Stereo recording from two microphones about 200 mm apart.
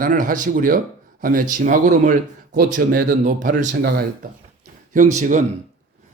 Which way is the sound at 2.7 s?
55° right (ahead or behind).